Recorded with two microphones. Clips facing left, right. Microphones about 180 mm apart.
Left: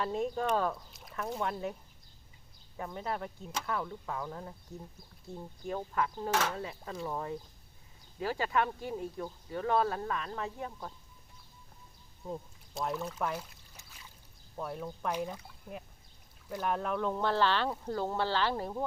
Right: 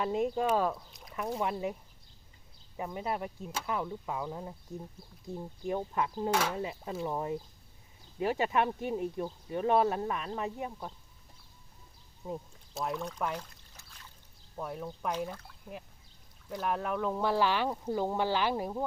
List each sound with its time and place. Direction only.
0.0 s speech: 15° right (ahead or behind)
2.7 s speech: 10° right (ahead or behind)
12.2 s pour: 5° right (ahead or behind)
14.5 s speech: centre (ahead or behind)
16.5 s speech: centre (ahead or behind)